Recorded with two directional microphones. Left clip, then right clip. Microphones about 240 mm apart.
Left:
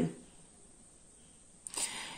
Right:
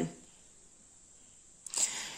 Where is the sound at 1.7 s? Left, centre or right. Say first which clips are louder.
Right 4 dB; centre.